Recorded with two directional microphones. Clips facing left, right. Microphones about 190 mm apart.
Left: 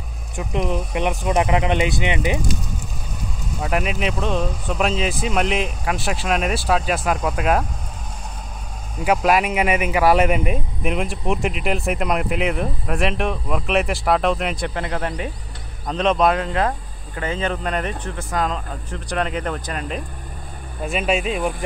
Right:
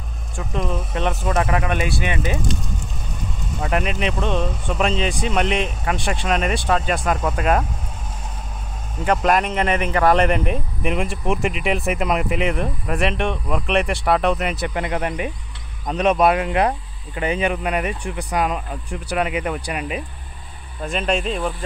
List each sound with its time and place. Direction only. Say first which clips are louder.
0.4 s speech: left 2 dB; 20° left (ahead or behind)
3.5 s speech: even; centre (ahead or behind)
9.0 s speech: left 1 dB; 5° left (ahead or behind); by 20.0 s 10° right (ahead or behind)
20.8 s speech: left 1 dB; 5° left (ahead or behind)